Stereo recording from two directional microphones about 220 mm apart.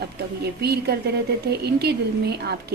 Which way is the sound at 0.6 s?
45° right (ahead or behind).